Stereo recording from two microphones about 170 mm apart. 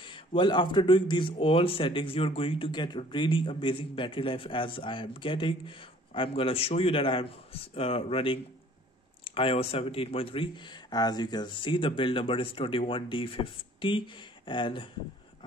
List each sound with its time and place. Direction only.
0.0 s a man's voice: 30° left (ahead or behind)